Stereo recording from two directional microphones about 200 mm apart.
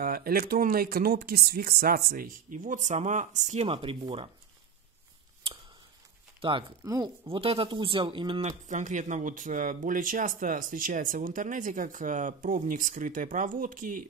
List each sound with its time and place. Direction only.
0.0 s speech: 45° right (ahead or behind); by 4.3 s 25° right (ahead or behind)
6.8 s speech: 15° right (ahead or behind)
7.2 s speech: 30° right (ahead or behind)
8.5 s speech: 40° right (ahead or behind)